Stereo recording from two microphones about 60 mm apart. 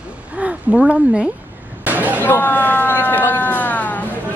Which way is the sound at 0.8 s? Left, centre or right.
Centre.